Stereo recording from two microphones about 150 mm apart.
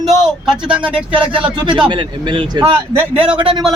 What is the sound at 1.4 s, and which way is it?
A man's voice, 30° right (ahead or behind).